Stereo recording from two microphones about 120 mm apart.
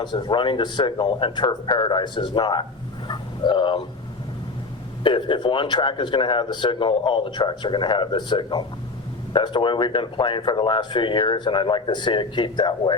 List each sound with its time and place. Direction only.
0.0 s speech: 35° left (ahead or behind)
3.1 s a sound: 40° left (ahead or behind)
5.0 s speech: 45° left (ahead or behind)